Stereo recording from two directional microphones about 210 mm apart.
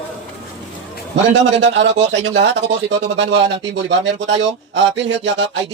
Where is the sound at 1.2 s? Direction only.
60° right (ahead or behind).